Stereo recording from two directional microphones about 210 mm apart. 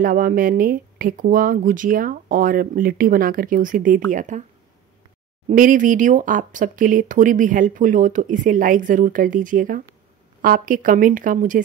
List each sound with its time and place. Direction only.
0.0 s speech: 40° right (ahead or behind)
5.5 s speech: 40° right (ahead or behind)